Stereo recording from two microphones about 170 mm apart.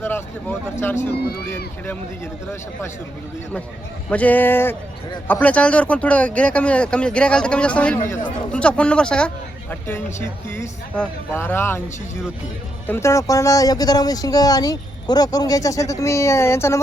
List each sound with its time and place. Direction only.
0.0 s speech: 10° left (ahead or behind)
4.1 s speech: 10° left (ahead or behind)
8.5 s speech: 5° left (ahead or behind)
12.9 s speech: 15° left (ahead or behind)